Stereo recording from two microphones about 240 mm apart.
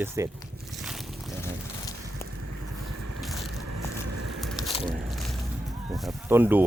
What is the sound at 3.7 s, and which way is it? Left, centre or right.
Vehicle, right.